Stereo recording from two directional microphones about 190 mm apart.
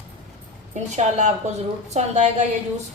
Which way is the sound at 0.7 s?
40° right (ahead or behind).